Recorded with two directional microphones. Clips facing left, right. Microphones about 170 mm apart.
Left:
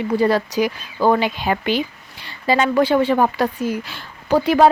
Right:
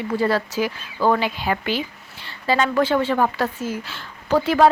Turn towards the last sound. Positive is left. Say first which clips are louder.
# left 2 dB
turn(degrees=15)  # may be behind; listen again after turning